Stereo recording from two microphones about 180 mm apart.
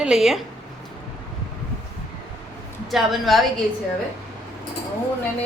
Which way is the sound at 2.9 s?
Centre (ahead or behind).